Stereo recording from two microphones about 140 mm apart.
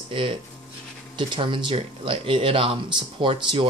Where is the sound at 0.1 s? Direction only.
40° right (ahead or behind).